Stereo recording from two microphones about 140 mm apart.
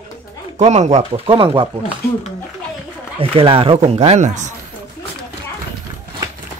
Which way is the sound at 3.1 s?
40° right (ahead or behind).